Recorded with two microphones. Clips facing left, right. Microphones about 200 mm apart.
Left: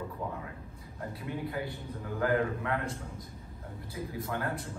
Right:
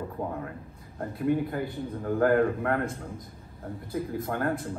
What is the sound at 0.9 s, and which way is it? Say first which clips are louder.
A man's voice: right 11 dB; 50° right (ahead or behind).